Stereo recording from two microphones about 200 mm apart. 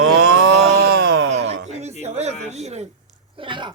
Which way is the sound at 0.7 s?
55° right (ahead or behind).